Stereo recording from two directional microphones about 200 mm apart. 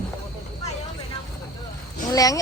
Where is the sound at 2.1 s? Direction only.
15° left (ahead or behind).